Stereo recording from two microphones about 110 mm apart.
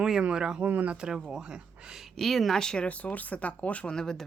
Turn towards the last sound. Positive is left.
turn(degrees=5)  # may be behind; listen again after turning